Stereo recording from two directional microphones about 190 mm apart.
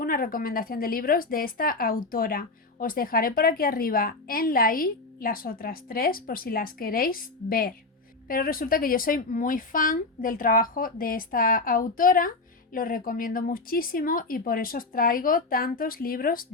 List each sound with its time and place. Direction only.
0.0 s a woman's voice: 50° left (ahead or behind)